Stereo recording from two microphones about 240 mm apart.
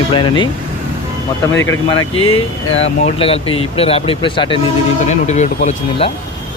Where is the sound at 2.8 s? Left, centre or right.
Left.